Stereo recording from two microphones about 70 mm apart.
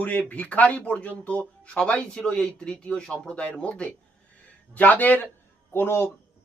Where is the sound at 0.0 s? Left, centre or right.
Left.